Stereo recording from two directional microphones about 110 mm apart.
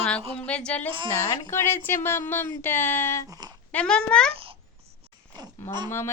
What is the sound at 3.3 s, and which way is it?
Speech, 40° right (ahead or behind).